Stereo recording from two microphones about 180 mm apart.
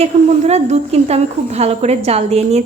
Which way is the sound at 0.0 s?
35° right (ahead or behind).